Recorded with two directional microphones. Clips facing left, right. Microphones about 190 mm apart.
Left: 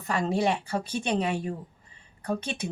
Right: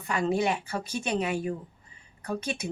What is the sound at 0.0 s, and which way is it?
A woman's voice, 35° left (ahead or behind).